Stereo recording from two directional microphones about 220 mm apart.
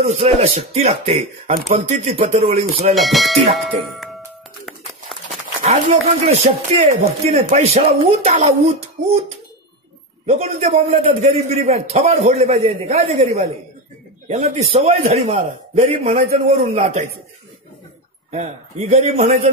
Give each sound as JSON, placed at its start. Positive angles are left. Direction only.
{"t": 0.0, "sound": "a man's voice", "side_deg": -30}
{"t": 2.9, "sound": "speech", "side_deg": 0}
{"t": 5.6, "sound": "a man's voice", "side_deg": -30}
{"t": 10.2, "sound": "a man's voice", "side_deg": -30}
{"t": 14.3, "sound": "a man's voice", "side_deg": -30}
{"t": 18.3, "sound": "speech", "side_deg": -30}